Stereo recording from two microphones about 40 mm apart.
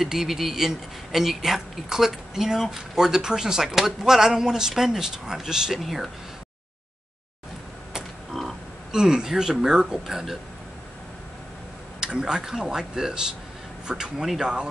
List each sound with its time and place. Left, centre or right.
0.0 s a man's voice: centre
5.8 s speech: centre
8.3 s a sound: centre
8.9 s a man's voice: centre
12.0 s a man's voice: centre